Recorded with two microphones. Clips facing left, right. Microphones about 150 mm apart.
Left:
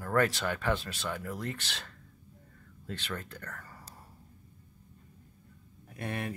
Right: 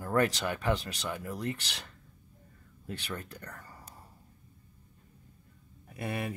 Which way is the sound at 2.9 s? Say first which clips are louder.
Even; 15° right (ahead or behind).